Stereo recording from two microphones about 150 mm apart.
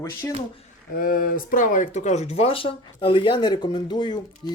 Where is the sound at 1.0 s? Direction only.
70° left (ahead or behind).